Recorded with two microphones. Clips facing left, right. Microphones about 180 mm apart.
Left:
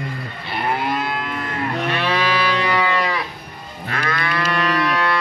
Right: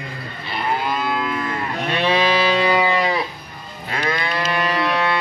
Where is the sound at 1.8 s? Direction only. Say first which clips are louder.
Right 4 dB; 20° right (ahead or behind).